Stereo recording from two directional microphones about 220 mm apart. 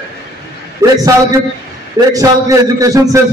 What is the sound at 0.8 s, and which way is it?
Speech, 15° right (ahead or behind).